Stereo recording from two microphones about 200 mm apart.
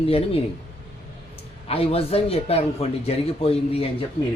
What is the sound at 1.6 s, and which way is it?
Speech, 30° left (ahead or behind).